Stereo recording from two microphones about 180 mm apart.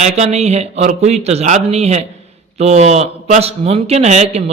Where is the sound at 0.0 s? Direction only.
40° right (ahead or behind).